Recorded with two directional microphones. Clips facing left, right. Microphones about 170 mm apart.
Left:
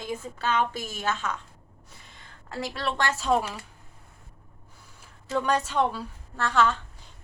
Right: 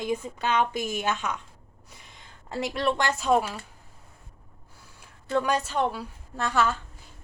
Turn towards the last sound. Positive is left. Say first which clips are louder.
# left 1 dB
turn(degrees=-10)  # may be behind; listen again after turning